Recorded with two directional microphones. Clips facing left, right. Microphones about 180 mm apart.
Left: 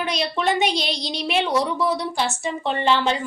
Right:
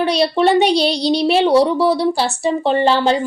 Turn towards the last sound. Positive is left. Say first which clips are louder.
# right 6 dB
turn(degrees=-35)  # may be behind; listen again after turning